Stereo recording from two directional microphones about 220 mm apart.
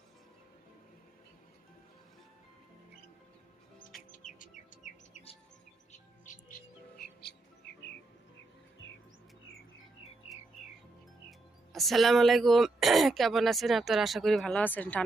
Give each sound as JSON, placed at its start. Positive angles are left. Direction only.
{"t": 4.1, "sound": "chirp", "side_deg": 35}
{"t": 5.9, "sound": "music", "side_deg": 35}
{"t": 11.3, "sound": "speech", "side_deg": 0}